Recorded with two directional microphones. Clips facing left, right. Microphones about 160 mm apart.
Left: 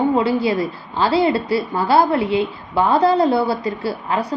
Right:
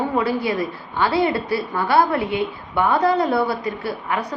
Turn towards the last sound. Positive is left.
turn(degrees=30)  # may be behind; listen again after turning